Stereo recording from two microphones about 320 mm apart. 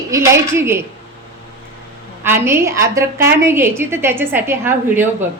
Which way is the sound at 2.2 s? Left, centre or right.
Centre.